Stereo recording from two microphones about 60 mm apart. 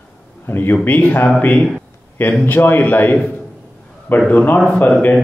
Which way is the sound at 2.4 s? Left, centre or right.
Left.